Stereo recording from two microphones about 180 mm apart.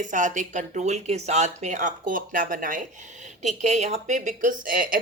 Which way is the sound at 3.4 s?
40° right (ahead or behind).